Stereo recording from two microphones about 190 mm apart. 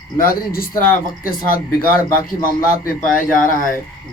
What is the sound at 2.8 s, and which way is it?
Speech, 45° left (ahead or behind).